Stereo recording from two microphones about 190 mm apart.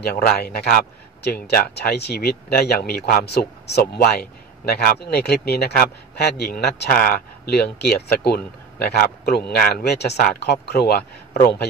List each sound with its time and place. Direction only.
0.0 s a man's voice: 55° left (ahead or behind)